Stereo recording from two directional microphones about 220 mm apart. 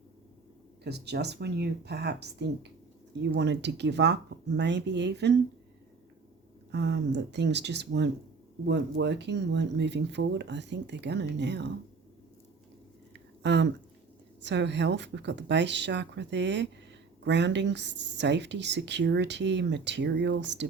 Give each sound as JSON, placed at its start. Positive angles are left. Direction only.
{"t": 0.9, "sound": "speech", "side_deg": -50}
{"t": 6.7, "sound": "speech", "side_deg": -50}
{"t": 13.4, "sound": "speech", "side_deg": -55}